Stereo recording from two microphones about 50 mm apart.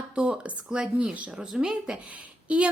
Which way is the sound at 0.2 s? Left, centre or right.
Right.